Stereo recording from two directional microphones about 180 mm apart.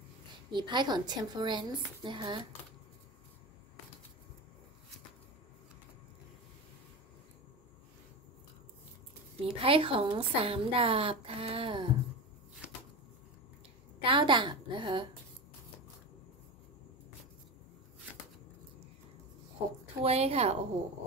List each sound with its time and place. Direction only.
0.5 s speech: 25° right (ahead or behind)
9.4 s a woman's voice: 30° right (ahead or behind)
14.0 s speech: 25° right (ahead or behind)
20.0 s a woman's voice: 35° right (ahead or behind)